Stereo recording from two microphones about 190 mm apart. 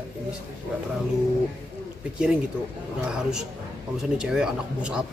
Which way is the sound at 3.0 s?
5° right (ahead or behind).